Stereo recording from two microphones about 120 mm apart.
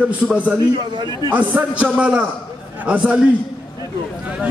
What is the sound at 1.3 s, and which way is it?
A man's voice, 10° right (ahead or behind).